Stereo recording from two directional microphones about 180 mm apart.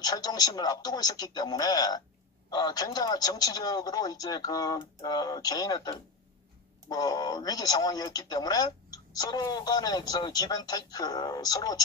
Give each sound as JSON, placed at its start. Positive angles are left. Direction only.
{"t": 0.0, "sound": "speech", "side_deg": 20}